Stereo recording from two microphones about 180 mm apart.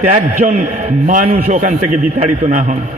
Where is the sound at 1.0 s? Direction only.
45° right (ahead or behind).